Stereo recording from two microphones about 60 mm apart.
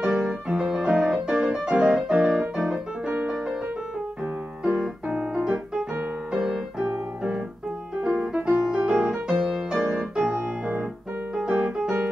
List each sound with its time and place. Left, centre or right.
0.0 s piano: centre
1.3 s music: centre
2.5 s piano: centre
4.7 s keyboard: centre
6.3 s music: centre
6.8 s piano: centre
8.0 s music: centre
8.6 s music: centre
10.1 s music: centre
11.5 s piano: centre